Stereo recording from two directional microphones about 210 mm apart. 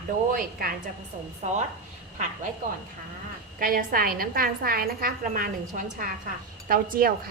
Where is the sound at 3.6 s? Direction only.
40° right (ahead or behind).